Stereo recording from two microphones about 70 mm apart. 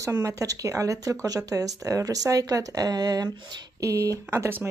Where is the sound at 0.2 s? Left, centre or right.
Right.